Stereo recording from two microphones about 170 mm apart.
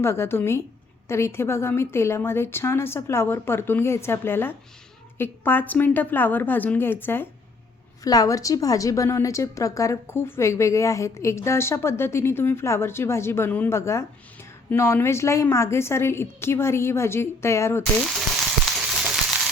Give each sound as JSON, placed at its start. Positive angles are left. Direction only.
{"t": 0.0, "sound": "a woman's voice", "side_deg": 15}